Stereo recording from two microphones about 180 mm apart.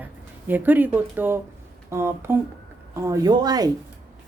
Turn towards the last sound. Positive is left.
turn(degrees=-20)  # may be behind; listen again after turning